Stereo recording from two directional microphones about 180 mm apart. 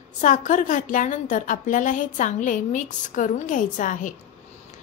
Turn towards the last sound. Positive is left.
turn(degrees=45)  # may be behind; listen again after turning